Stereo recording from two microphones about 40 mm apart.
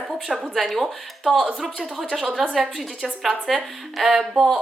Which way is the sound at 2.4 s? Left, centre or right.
Centre.